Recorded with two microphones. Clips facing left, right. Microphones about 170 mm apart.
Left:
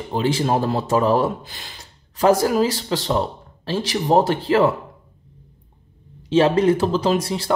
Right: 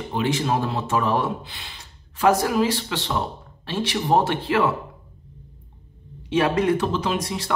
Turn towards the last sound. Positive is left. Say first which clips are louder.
# left 5 dB
turn(degrees=30)  # may be behind; listen again after turning